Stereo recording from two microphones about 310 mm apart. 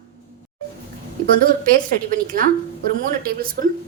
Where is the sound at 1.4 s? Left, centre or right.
Right.